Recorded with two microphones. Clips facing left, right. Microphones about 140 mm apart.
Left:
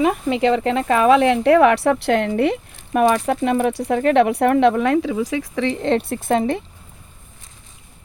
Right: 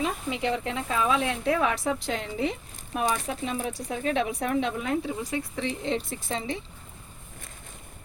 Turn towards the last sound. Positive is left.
turn(degrees=55)  # may be behind; listen again after turning